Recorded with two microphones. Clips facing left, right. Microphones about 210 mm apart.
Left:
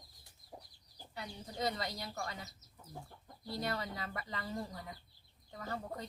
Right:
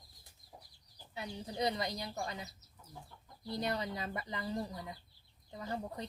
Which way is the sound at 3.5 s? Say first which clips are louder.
Right 2 dB; 20° right (ahead or behind).